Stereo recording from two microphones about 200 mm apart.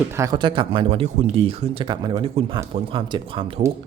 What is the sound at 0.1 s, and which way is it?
A man's voice, 15° right (ahead or behind).